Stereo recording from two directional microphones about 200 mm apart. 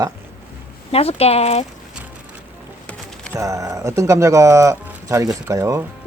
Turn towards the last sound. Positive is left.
turn(degrees=-15)  # may be behind; listen again after turning